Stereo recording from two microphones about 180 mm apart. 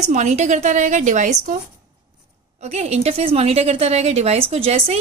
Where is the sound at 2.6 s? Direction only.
35° right (ahead or behind).